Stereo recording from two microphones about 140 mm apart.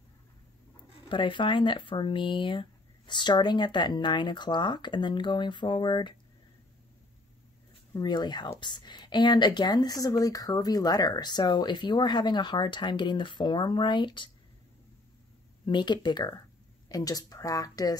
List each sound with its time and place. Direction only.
1.0 s speech: 35° left (ahead or behind)
7.9 s speech: 30° left (ahead or behind)
15.6 s speech: 35° left (ahead or behind)